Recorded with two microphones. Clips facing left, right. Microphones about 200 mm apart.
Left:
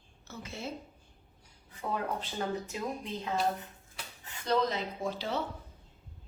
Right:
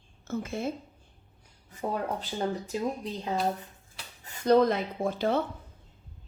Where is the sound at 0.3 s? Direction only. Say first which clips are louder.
Right 9 dB; 50° right (ahead or behind).